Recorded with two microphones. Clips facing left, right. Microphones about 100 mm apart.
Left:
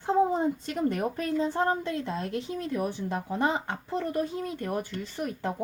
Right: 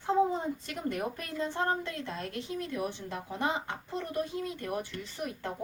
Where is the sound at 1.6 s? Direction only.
25° left (ahead or behind).